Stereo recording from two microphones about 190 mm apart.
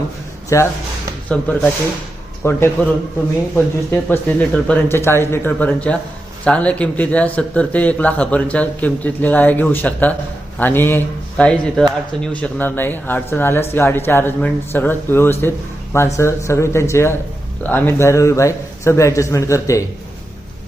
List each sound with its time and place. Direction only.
0.5 s speech: 15° left (ahead or behind)